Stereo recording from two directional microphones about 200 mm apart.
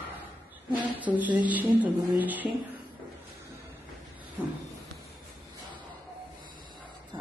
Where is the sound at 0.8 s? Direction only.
10° right (ahead or behind).